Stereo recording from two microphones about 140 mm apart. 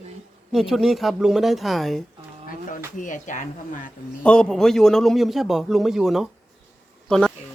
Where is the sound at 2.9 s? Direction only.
65° left (ahead or behind).